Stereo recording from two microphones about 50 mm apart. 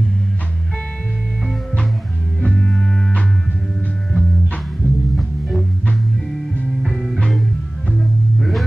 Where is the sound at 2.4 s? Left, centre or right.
Centre.